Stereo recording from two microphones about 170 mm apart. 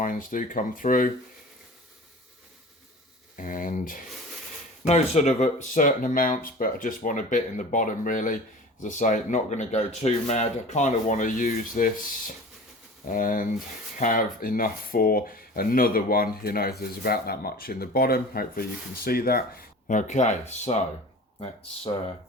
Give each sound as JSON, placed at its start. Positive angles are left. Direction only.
{"t": 0.0, "sound": "speech", "side_deg": 50}
{"t": 3.3, "sound": "speech", "side_deg": 50}